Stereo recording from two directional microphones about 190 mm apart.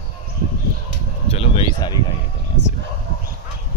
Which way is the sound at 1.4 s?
25° left (ahead or behind).